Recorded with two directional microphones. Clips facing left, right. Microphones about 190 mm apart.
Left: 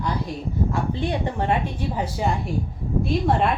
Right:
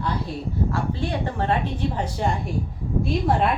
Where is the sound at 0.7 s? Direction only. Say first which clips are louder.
Left 1 dB; 20° left (ahead or behind); by 3.5 s centre (ahead or behind).